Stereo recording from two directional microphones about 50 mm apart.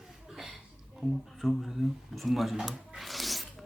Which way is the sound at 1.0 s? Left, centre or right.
Centre.